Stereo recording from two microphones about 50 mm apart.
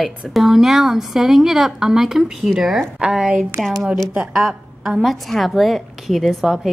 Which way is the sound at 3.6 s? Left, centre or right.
Centre.